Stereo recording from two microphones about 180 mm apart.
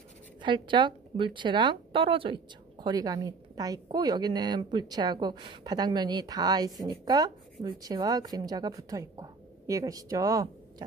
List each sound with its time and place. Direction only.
0.4 s a woman's voice: 25° right (ahead or behind)